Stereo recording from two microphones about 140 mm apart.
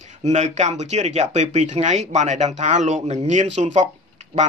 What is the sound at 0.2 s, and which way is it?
Speech, 55° right (ahead or behind).